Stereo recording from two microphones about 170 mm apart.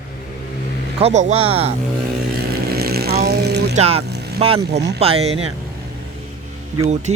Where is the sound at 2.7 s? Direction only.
65° right (ahead or behind).